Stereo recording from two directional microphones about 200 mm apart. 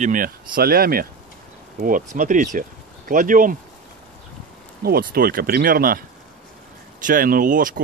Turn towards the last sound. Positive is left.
turn(degrees=-45)  # may be behind; listen again after turning